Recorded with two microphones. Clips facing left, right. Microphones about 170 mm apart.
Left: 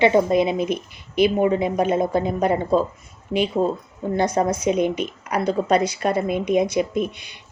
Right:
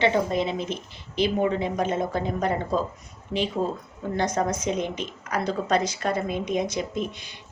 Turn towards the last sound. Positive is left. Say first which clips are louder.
# left 5 dB
turn(degrees=10)  # may be behind; listen again after turning